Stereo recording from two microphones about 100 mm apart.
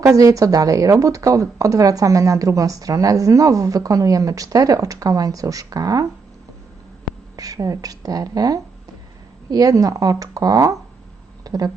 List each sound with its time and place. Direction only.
0.0 s speech: 35° right (ahead or behind)
7.3 s speech: 35° right (ahead or behind)